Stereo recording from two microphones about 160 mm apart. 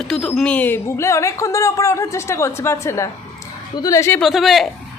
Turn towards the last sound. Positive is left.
turn(degrees=0)  # may be behind; listen again after turning